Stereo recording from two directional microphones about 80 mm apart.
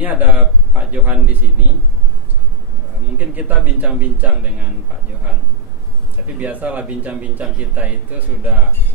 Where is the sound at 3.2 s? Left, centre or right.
Centre.